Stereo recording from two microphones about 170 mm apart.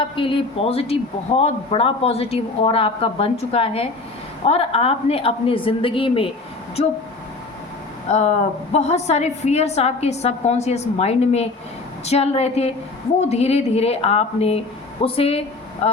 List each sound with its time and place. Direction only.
0.0 s speech: 30° left (ahead or behind)
8.0 s speech: 40° left (ahead or behind)